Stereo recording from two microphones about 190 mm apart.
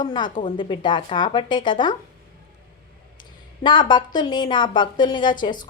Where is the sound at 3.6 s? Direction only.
25° left (ahead or behind).